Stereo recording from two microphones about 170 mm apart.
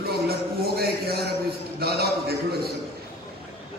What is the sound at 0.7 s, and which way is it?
A man's voice, 70° right (ahead or behind).